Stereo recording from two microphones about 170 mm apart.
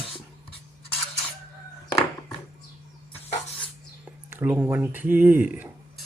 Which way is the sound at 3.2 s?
35° left (ahead or behind).